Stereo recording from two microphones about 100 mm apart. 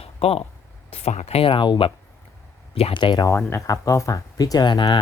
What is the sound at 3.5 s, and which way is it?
Speech, 35° left (ahead or behind).